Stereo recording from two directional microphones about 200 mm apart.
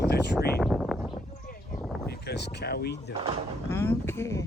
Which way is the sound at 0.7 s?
Centre (ahead or behind).